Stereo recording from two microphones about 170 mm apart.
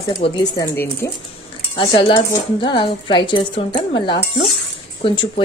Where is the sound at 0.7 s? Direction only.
10° left (ahead or behind).